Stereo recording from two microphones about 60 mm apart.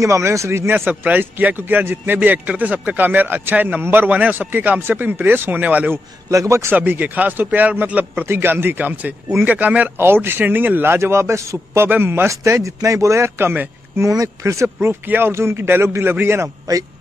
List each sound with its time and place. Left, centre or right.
0.0 s speech: right
0.7 s a man's voice: right
6.3 s speech: right
6.7 s a man's voice: right
9.9 s a man's voice: right
12.3 s speech: right
13.4 s speech: right
14.0 s speech: right
14.4 s speech: right
14.8 s a man's voice: right
15.3 s a man's voice: right